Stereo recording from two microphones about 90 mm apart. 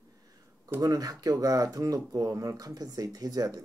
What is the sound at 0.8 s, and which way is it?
Speech, 40° right (ahead or behind).